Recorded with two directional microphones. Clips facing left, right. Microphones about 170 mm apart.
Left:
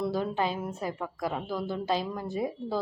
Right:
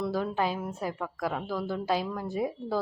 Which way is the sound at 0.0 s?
5° right (ahead or behind).